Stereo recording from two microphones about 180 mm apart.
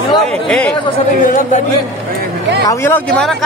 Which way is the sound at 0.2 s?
5° left (ahead or behind).